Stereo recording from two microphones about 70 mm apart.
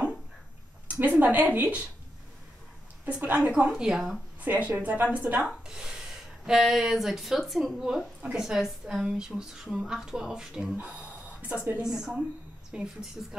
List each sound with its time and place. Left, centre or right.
0.8 s a sound: right
1.2 s a woman's voice: right
3.1 s a woman's voice: centre
4.4 s a woman's voice: right
10.8 s speech: right
11.8 s a woman's voice: centre